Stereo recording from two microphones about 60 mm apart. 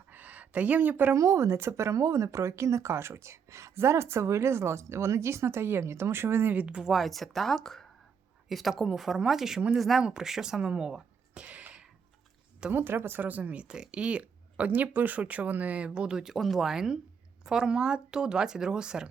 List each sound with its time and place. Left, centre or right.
0.1 s a sound: right
1.1 s speech: right
6.7 s speech: centre
6.9 s speech: centre
11.4 s a sound: right
12.7 s speech: right; by 16.3 s centre
16.3 s speech: centre